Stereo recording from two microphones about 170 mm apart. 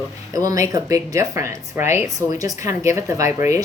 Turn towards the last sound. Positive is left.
turn(degrees=-15)  # may be behind; listen again after turning